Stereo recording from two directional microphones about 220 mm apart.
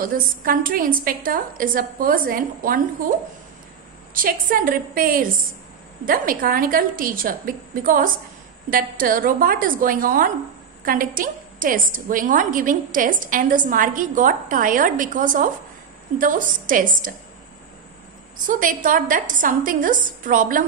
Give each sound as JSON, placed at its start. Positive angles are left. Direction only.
{"t": 0.0, "sound": "a woman's voice", "side_deg": -40}
{"t": 4.1, "sound": "a woman's voice", "side_deg": -40}
{"t": 18.5, "sound": "a woman's voice", "side_deg": -35}